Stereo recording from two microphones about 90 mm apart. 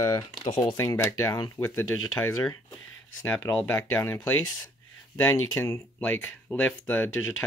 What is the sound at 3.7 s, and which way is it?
Speech, 30° left (ahead or behind).